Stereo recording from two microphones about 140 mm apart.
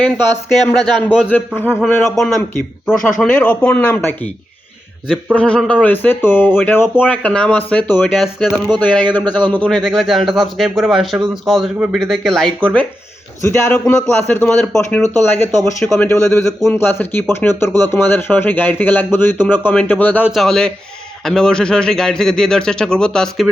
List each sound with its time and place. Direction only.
0.5 s a man's voice: 5° left (ahead or behind)
2.1 s a man's voice: centre (ahead or behind)
5.3 s speech: 5° left (ahead or behind)
8.1 s a man's voice: centre (ahead or behind)
8.8 s a man's voice: 10° left (ahead or behind)
13.4 s speech: 15° left (ahead or behind)
16.1 s a man's voice: 25° right (ahead or behind)
16.6 s speech: 15° left (ahead or behind)
20.2 s a man's voice: centre (ahead or behind)